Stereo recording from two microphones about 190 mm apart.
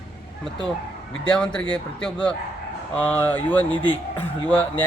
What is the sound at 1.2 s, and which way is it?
Speech, 5° left (ahead or behind).